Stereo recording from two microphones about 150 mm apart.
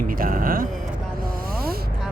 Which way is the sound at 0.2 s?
70° right (ahead or behind).